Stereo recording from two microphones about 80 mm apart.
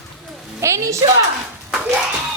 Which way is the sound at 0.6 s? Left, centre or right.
Right.